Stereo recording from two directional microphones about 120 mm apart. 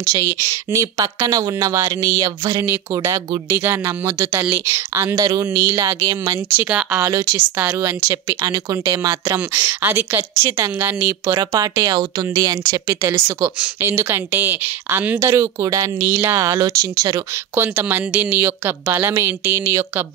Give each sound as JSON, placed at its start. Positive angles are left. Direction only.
{"t": 0.0, "sound": "speech", "side_deg": -25}
{"t": 6.5, "sound": "speech", "side_deg": -15}
{"t": 7.1, "sound": "speech", "side_deg": -25}
{"t": 13.7, "sound": "speech", "side_deg": -20}